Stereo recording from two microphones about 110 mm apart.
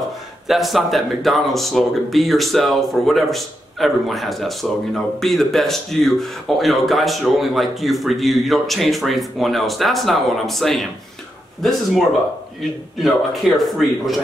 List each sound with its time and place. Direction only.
0.5 s speech: centre (ahead or behind)
13.0 s speech: centre (ahead or behind)